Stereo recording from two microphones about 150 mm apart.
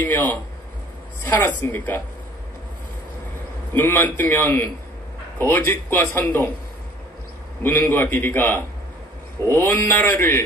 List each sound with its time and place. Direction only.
0.0 s a man's voice: 15° left (ahead or behind)
3.7 s a man's voice: 15° left (ahead or behind)
7.6 s a man's voice: 15° left (ahead or behind)